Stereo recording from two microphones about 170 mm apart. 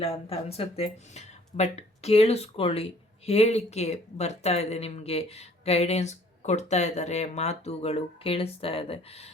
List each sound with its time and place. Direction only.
0.0 s speech: 35° left (ahead or behind)